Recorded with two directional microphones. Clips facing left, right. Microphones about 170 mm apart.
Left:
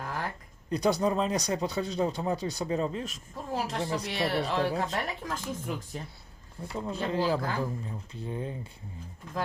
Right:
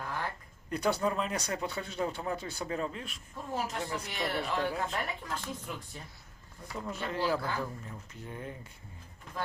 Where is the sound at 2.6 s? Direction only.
25° left (ahead or behind); by 6.0 s 45° left (ahead or behind).